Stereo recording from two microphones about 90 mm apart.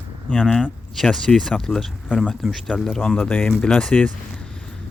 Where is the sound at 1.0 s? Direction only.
5° left (ahead or behind).